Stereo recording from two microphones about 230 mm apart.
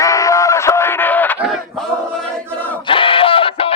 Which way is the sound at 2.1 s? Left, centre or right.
Centre.